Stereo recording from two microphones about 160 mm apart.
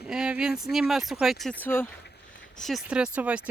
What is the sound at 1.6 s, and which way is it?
Speech, 15° left (ahead or behind).